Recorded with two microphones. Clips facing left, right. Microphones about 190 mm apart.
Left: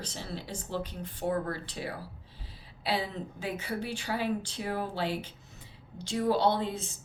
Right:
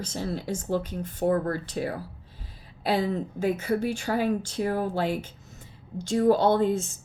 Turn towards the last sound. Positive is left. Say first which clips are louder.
# right 6 dB
turn(degrees=-45)  # may be behind; listen again after turning